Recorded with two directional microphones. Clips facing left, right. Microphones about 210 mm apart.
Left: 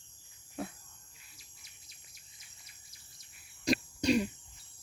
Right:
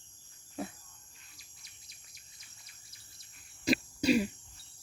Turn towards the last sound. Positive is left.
turn(degrees=-5)  # may be behind; listen again after turning